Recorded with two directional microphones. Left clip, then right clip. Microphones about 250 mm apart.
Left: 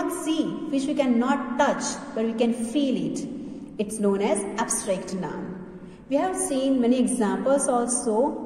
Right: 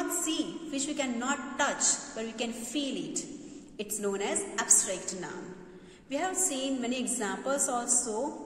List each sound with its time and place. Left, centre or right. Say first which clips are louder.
0.2 s a woman's voice: left 7 dB; centre
7.8 s a woman's voice: left 5 dB; right